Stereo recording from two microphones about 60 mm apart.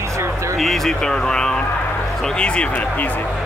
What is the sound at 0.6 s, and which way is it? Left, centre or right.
Speech, centre.